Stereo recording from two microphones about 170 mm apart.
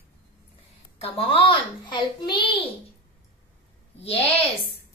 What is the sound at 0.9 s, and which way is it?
A child's voice, 35° left (ahead or behind).